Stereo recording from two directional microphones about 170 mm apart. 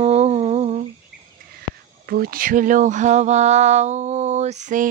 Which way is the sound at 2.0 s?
60° right (ahead or behind).